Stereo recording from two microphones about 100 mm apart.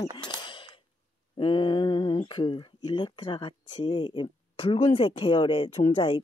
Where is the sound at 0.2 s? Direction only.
55° left (ahead or behind).